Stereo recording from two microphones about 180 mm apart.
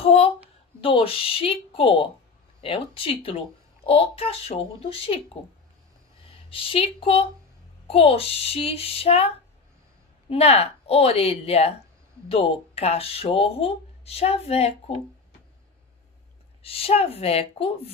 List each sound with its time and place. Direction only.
0.0 s speech: 30° left (ahead or behind)
6.5 s speech: 30° left (ahead or behind)
10.3 s speech: 35° left (ahead or behind)
16.6 s speech: 35° left (ahead or behind)